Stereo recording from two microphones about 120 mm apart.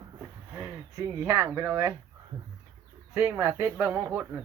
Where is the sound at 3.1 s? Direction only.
25° right (ahead or behind).